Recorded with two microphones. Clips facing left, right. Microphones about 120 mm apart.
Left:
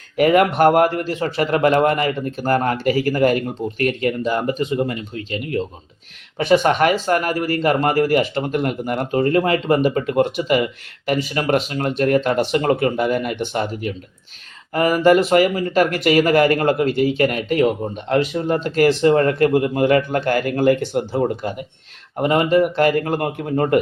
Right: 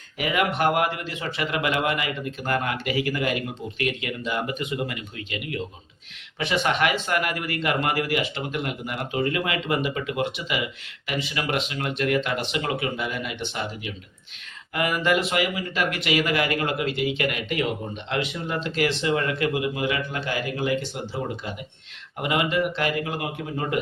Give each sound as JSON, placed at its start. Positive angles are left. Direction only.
{"t": 0.2, "sound": "a man's voice", "side_deg": 45}